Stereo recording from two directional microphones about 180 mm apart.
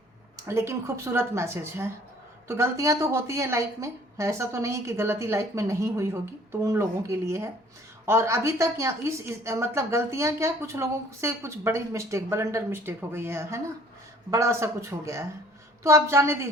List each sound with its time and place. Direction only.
0.4 s a woman's voice: 15° right (ahead or behind)